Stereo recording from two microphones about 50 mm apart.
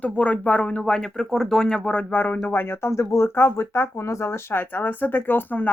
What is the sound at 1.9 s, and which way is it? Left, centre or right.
Speech, left.